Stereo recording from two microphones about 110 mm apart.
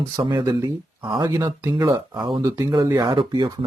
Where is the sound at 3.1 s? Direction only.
45° right (ahead or behind).